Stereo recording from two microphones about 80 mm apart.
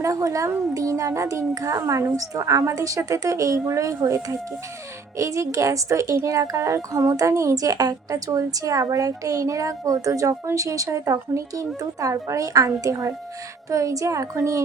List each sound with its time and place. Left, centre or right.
0.0 s a child's voice: right